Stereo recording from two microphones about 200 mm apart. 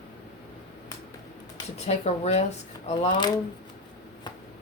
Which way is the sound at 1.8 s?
35° left (ahead or behind).